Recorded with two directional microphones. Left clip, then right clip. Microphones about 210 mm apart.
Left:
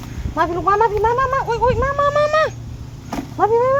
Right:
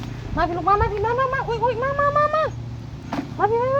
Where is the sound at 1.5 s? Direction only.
35° left (ahead or behind).